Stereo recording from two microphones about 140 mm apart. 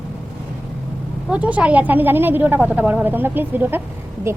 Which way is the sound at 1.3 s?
10° right (ahead or behind).